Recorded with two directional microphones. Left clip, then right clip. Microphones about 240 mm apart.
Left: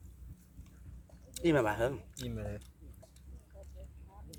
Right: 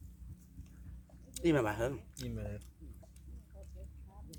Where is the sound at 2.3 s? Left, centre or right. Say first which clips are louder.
Left 3 dB; centre.